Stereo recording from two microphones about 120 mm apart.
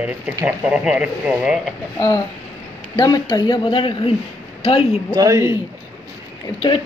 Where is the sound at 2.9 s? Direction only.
30° left (ahead or behind); by 5.1 s 50° left (ahead or behind).